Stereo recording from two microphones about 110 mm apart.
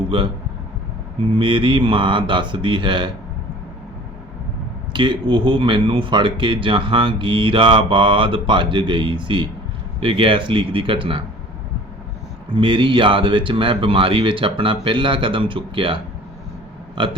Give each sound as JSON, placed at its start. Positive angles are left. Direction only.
{"t": 0.1, "sound": "speech", "side_deg": -50}
{"t": 4.9, "sound": "speech", "side_deg": -45}
{"t": 12.5, "sound": "speech", "side_deg": -50}